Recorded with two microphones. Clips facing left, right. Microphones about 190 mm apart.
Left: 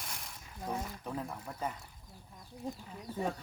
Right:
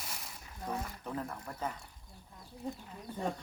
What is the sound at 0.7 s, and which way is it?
Speech, 10° left (ahead or behind).